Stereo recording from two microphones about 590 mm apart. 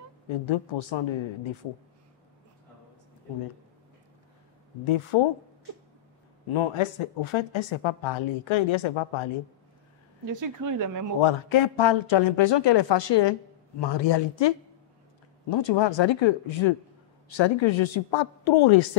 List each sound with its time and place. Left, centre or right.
0.5 s speech: left
5.1 s speech: left
6.5 s speech: left
10.2 s speech: right
11.1 s speech: left
15.5 s speech: left